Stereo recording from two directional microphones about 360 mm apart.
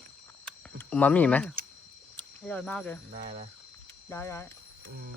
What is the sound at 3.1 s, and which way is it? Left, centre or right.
Speech, right.